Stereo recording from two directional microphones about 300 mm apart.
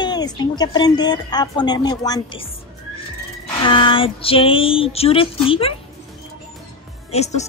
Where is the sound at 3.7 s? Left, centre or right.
Centre.